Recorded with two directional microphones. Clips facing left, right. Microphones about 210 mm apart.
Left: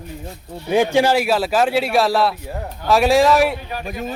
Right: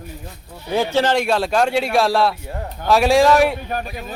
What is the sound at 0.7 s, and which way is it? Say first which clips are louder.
Speech: left 2 dB; 15° left (ahead or behind).